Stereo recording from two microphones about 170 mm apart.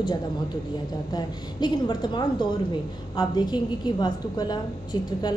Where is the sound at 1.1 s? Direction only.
25° left (ahead or behind).